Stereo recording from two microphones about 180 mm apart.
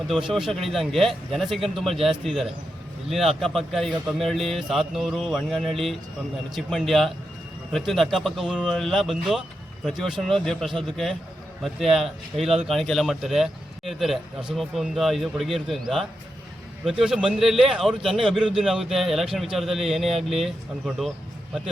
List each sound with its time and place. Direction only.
0.1 s a man's voice: 5° right (ahead or behind)
16.8 s a man's voice: 5° right (ahead or behind)